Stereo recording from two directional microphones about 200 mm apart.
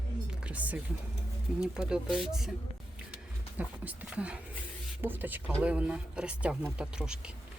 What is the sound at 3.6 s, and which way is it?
Speech, 5° right (ahead or behind).